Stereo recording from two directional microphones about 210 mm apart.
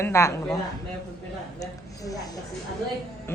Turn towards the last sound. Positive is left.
turn(degrees=10)  # may be behind; listen again after turning